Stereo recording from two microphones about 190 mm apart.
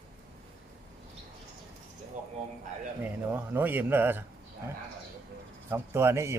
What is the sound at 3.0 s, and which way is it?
Speech, 10° right (ahead or behind).